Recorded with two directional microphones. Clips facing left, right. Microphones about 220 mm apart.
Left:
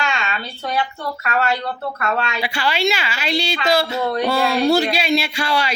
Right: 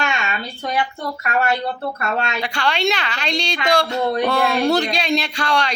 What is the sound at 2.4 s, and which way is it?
A woman's voice, 5° left (ahead or behind).